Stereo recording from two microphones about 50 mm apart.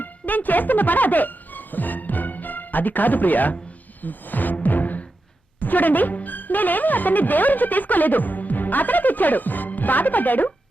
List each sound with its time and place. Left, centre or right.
0.0 s speech: left
4.5 s music: left
5.5 s speech: left